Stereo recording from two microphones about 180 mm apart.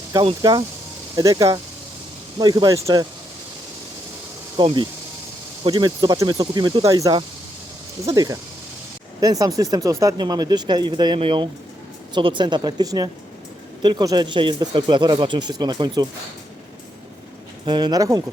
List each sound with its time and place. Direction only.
0.1 s speech: 20° right (ahead or behind)
4.5 s speech: 25° right (ahead or behind)
17.7 s speech: 25° right (ahead or behind)